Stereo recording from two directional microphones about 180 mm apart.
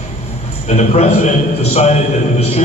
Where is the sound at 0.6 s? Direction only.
35° left (ahead or behind).